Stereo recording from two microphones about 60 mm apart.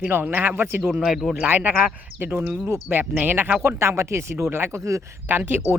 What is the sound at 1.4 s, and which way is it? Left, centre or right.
Speech, right.